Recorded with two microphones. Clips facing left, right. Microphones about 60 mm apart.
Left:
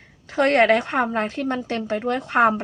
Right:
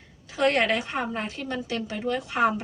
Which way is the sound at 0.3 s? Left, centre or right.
Left.